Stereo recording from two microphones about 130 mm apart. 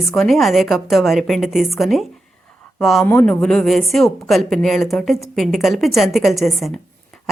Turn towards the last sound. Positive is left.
turn(degrees=0)  # may be behind; listen again after turning